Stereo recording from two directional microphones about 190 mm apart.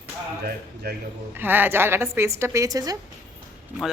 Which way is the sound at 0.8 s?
55° right (ahead or behind).